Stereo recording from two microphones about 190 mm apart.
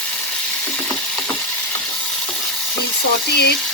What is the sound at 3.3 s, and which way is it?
Speech, 60° left (ahead or behind).